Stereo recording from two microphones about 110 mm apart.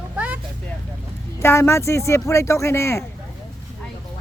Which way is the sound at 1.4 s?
20° left (ahead or behind).